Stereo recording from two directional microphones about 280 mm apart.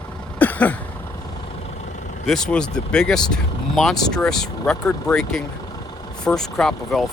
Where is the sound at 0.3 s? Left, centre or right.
Centre.